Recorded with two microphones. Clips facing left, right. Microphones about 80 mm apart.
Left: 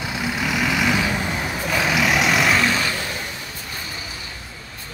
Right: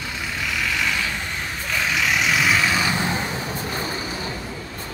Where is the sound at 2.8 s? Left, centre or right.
Right.